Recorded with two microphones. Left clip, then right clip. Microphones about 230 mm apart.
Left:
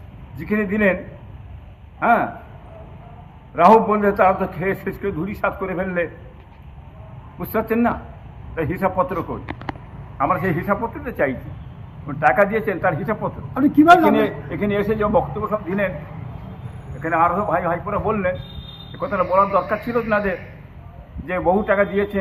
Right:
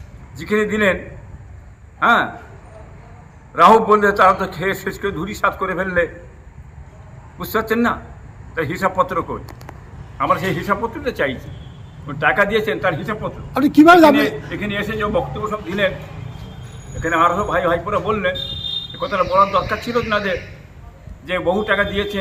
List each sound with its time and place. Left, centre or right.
0.3 s a man's voice: centre
2.0 s a man's voice: centre
3.5 s a man's voice: centre
7.3 s a man's voice: centre
13.5 s a man's voice: right
13.8 s a man's voice: right
17.0 s a man's voice: right